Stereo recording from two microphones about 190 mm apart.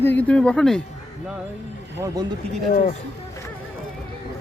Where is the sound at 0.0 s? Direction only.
10° left (ahead or behind).